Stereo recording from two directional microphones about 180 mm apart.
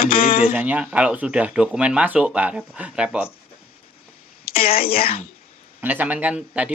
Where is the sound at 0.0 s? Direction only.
55° left (ahead or behind).